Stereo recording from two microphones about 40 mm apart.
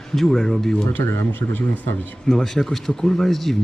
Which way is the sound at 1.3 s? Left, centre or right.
Left.